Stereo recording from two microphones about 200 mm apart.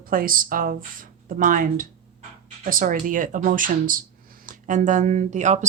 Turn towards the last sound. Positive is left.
turn(degrees=-35)  # may be behind; listen again after turning